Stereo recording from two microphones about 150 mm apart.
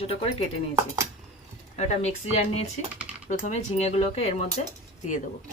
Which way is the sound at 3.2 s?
50° left (ahead or behind).